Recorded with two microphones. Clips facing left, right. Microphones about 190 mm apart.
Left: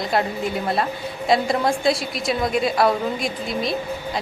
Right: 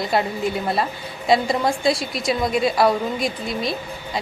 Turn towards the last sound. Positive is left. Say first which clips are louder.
# even
turn(degrees=0)  # may be behind; listen again after turning